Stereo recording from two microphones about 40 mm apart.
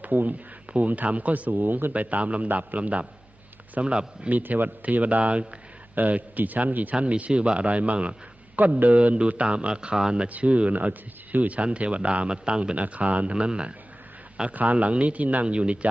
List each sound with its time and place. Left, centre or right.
0.0 s a man's voice: right
4.3 s a man's voice: right
4.8 s speech: right
5.9 s a man's voice: right
7.0 s speech: right
10.2 s speech: right
11.5 s speech: right
12.3 s a man's voice: right
12.8 s speech: right
14.5 s speech: right
15.4 s a man's voice: right